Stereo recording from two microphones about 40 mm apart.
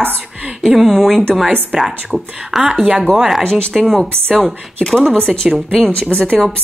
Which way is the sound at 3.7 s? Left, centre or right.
Centre.